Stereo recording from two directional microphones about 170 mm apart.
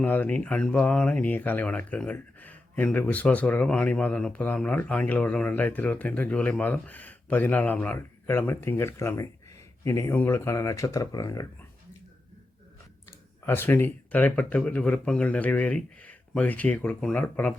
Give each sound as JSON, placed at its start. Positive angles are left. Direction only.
{"t": 0.0, "sound": "speech", "side_deg": 10}
{"t": 13.1, "sound": "speech", "side_deg": 15}